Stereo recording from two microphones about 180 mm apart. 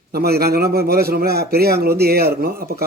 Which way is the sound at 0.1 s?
60° right (ahead or behind).